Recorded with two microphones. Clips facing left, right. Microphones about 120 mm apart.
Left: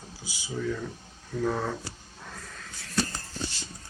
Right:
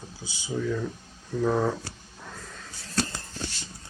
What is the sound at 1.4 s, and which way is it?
Speech, 10° right (ahead or behind).